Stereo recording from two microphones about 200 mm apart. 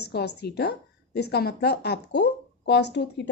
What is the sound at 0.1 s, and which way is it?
A woman's voice, 55° left (ahead or behind).